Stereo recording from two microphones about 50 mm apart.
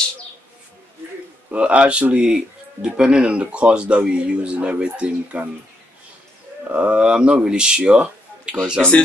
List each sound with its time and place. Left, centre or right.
1.5 s speech: right
6.7 s speech: right
8.8 s speech: centre